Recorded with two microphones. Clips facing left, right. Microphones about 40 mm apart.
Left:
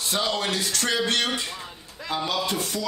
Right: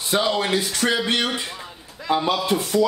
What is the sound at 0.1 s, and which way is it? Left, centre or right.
A man's voice, centre.